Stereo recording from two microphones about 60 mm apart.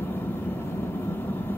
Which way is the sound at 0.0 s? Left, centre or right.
Left.